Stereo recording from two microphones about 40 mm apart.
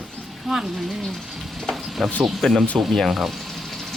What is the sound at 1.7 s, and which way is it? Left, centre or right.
Stir, centre.